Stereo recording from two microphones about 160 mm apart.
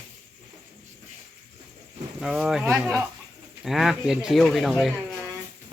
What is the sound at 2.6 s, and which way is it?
Speech, 15° right (ahead or behind).